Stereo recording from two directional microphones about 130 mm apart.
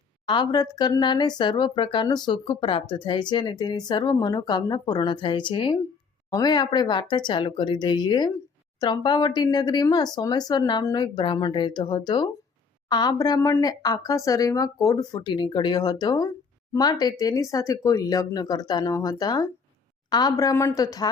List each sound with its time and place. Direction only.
0.3 s speech: 35° left (ahead or behind)